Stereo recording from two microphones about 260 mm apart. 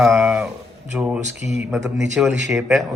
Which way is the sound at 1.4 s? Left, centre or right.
Left.